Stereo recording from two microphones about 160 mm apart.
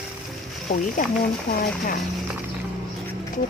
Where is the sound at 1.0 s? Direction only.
55° left (ahead or behind).